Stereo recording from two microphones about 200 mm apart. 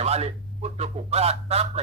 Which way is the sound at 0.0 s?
30° right (ahead or behind).